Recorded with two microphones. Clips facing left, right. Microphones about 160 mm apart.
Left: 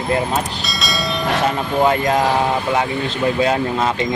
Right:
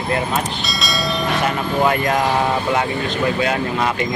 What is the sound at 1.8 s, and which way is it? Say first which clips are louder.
Speech: left 2 dB; 15° left (ahead or behind).